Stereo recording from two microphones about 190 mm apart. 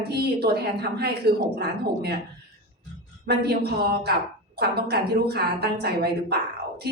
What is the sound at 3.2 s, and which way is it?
A woman's voice, 60° right (ahead or behind).